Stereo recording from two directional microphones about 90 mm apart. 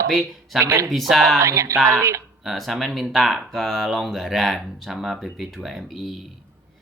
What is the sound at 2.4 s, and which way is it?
Speech, centre (ahead or behind).